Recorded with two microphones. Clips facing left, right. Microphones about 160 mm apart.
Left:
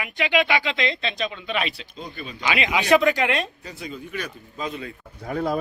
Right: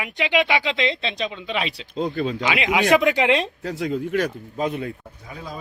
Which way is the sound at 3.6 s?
90° right.